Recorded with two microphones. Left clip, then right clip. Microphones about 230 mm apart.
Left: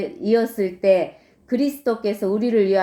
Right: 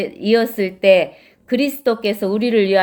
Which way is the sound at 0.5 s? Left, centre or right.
Right.